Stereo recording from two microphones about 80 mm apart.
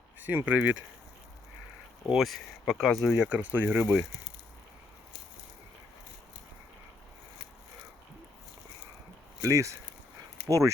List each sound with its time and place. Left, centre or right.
0.3 s speech: right
2.0 s speech: centre
3.1 s speech: centre
9.4 s speech: right